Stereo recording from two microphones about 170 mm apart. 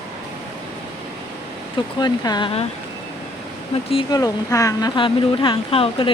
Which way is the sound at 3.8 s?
30° left (ahead or behind).